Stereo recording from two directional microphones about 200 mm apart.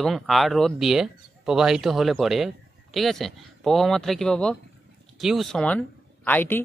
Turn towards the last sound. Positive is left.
turn(degrees=10)  # may be behind; listen again after turning